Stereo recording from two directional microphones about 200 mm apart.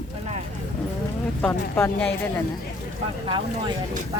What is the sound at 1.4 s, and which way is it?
Speech, 10° left (ahead or behind).